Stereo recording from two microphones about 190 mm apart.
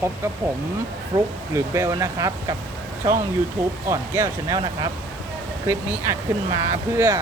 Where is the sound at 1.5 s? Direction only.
15° right (ahead or behind).